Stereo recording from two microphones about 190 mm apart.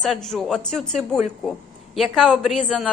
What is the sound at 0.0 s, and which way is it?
A woman's voice, centre (ahead or behind).